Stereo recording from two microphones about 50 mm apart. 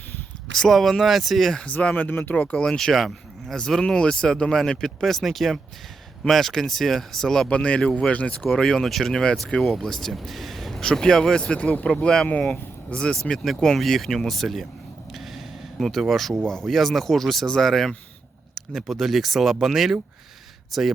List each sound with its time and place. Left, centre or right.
0.7 s speech: centre
1.6 s speech: left
2.5 s speech: centre
2.7 s speech: centre
7.5 s speech: left
8.5 s speech: centre
10.1 s a sound: centre
10.8 s speech: centre
12.3 s speech: left
13.7 s speech: centre
15.1 s snort: centre
15.8 s speech: centre
16.4 s speech: centre
16.6 s speech: centre